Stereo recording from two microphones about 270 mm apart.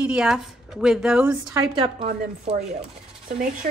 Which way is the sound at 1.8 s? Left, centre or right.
Right.